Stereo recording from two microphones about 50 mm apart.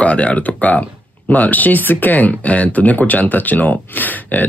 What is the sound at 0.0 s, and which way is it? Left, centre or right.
Speech, left.